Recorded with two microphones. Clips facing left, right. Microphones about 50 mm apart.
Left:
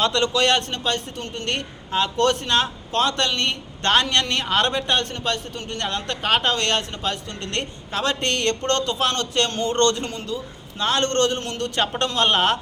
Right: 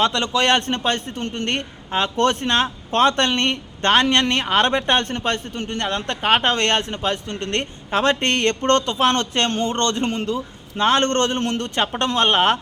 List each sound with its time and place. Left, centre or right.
0.0 s a man's voice: centre
10.1 s a man's voice: right